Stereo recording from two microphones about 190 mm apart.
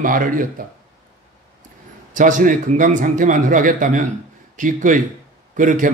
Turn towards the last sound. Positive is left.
turn(degrees=-45)  # may be behind; listen again after turning